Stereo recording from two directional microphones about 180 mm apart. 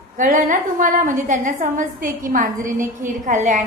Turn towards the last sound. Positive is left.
turn(degrees=-45)  # may be behind; listen again after turning